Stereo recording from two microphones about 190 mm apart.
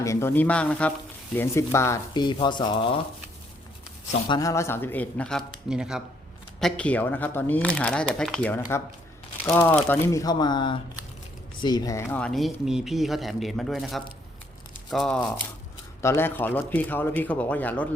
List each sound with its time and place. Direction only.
0.0 s speech: 15° left (ahead or behind)
4.3 s speech: 20° left (ahead or behind)